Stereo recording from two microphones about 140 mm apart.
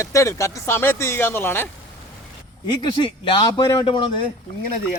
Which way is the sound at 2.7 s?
35° left (ahead or behind).